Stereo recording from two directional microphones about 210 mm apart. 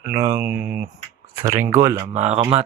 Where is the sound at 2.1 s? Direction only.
30° right (ahead or behind).